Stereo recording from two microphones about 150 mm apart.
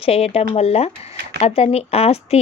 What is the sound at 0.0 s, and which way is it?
A woman's voice, 40° left (ahead or behind).